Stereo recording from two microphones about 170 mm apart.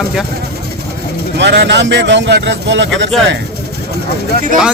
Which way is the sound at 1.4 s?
90° right.